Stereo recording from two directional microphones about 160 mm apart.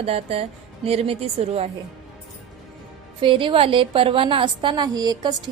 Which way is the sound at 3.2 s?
30° right (ahead or behind).